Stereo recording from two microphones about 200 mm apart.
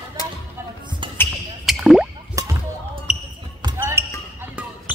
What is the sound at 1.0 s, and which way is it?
Basketball bounce, 25° right (ahead or behind).